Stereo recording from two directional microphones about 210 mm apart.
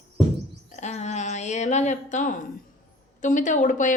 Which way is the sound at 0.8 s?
35° left (ahead or behind).